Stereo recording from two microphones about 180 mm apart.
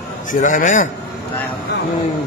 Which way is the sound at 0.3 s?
45° left (ahead or behind).